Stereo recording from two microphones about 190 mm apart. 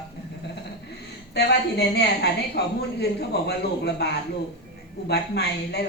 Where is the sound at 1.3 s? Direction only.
60° left (ahead or behind).